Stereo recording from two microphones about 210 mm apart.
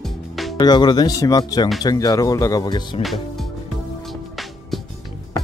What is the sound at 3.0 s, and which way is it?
Speech, centre (ahead or behind).